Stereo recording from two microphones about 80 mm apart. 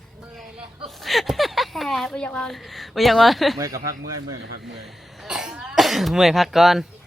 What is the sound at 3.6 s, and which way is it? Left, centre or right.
Speech, right.